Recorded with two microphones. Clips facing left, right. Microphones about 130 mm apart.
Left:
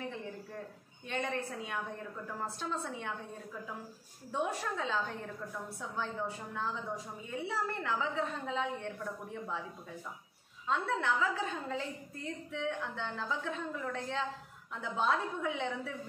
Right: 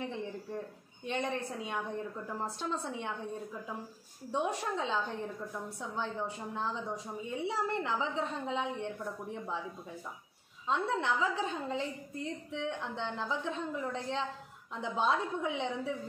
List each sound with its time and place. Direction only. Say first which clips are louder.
0.1 s a sound: right 4 dB; 20° right (ahead or behind)
1.0 s a woman's voice: right 2 dB; 20° right (ahead or behind)
4.3 s a woman's voice: right 2 dB; 20° right (ahead or behind)
10.7 s a woman's voice: right 1 dB; 20° right (ahead or behind)